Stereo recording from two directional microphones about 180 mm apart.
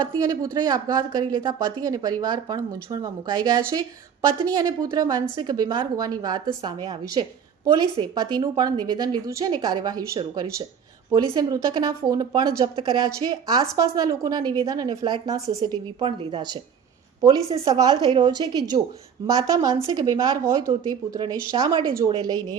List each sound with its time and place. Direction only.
0.1 s a woman's voice: 20° right (ahead or behind)